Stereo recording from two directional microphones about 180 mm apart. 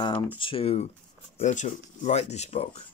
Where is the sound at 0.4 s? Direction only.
30° left (ahead or behind).